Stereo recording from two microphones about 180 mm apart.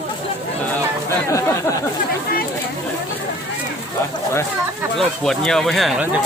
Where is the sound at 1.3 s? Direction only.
15° left (ahead or behind).